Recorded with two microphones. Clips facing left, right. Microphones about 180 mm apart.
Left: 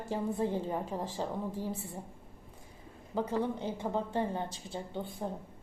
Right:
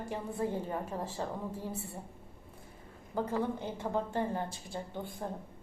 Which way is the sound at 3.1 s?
15° left (ahead or behind).